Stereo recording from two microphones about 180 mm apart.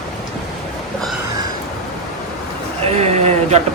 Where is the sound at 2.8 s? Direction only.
35° right (ahead or behind).